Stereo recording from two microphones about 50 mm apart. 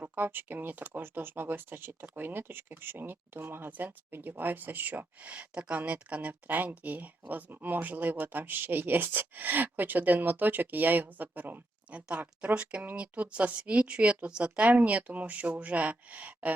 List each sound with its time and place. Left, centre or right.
0.0 s speech: right
11.9 s speech: right